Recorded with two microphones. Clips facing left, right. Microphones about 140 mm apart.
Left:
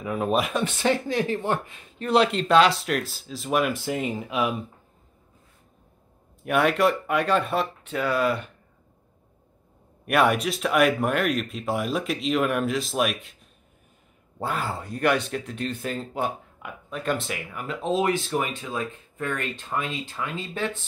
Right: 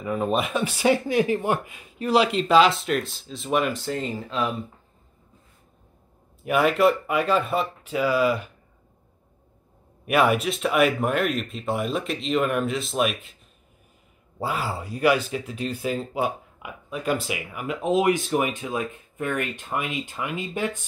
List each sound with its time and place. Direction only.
0.0 s speech: centre (ahead or behind)
3.7 s speech: 10° left (ahead or behind)
6.4 s speech: centre (ahead or behind)
10.0 s speech: centre (ahead or behind)
14.4 s speech: 5° right (ahead or behind); by 20.8 s 20° right (ahead or behind)